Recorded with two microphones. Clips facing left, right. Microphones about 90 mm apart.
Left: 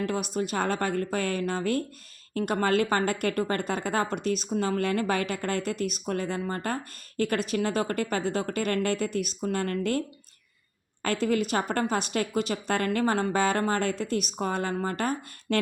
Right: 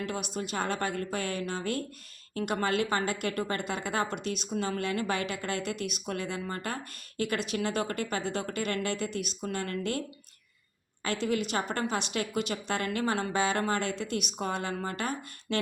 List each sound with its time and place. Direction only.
0.0 s a woman's voice: 45° left (ahead or behind)
11.0 s a woman's voice: 50° left (ahead or behind)